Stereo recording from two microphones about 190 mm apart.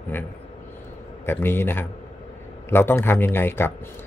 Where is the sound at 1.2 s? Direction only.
10° left (ahead or behind).